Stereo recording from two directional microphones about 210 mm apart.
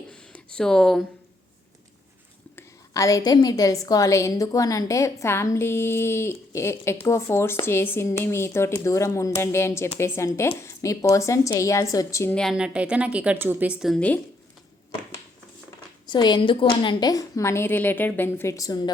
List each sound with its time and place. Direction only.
0.1 s a sound: 5° left (ahead or behind)
2.6 s a woman's voice: 15° left (ahead or behind)
16.0 s a woman's voice: 20° left (ahead or behind)